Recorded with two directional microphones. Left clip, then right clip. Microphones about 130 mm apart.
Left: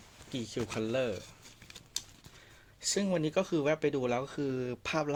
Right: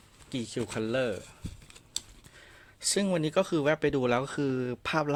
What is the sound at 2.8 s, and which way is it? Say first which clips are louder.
Speech: right 3 dB; 40° right (ahead or behind).